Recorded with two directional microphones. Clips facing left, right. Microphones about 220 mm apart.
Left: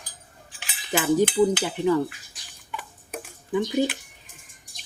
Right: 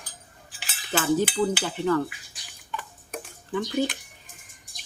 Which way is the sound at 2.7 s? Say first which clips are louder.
Even; 15° left (ahead or behind).